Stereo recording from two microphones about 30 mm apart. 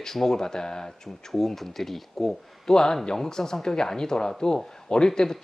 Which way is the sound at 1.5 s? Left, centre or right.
Centre.